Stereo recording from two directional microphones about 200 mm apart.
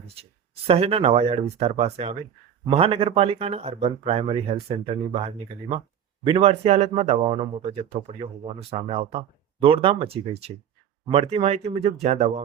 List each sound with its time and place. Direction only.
0.7 s speech: 30° right (ahead or behind)
6.2 s speech: 30° right (ahead or behind)